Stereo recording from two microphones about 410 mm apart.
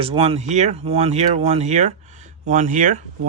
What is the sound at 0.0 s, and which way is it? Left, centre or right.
Speech, centre.